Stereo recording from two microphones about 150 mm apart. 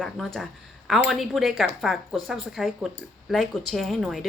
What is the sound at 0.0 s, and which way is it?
Speech, centre (ahead or behind).